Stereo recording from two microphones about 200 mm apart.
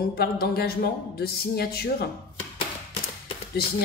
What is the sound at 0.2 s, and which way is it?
Speech, 50° left (ahead or behind).